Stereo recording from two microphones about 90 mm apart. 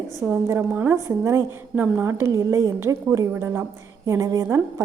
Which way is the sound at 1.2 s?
35° right (ahead or behind).